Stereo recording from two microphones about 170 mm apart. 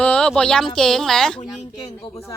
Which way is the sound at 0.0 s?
5° left (ahead or behind).